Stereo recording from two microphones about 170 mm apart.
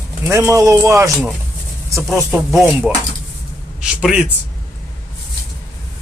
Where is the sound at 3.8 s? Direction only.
5° right (ahead or behind).